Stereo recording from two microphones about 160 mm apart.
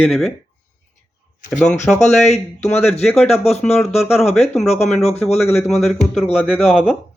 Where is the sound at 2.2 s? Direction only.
45° left (ahead or behind).